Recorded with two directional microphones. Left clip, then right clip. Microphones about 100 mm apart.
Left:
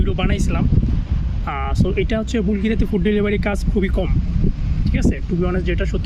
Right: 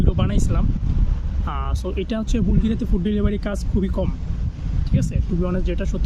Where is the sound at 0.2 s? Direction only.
20° right (ahead or behind).